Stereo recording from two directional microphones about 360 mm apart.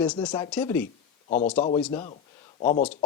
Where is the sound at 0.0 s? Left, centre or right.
Centre.